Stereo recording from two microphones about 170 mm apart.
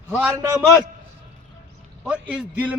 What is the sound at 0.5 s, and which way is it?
Speech, centre (ahead or behind).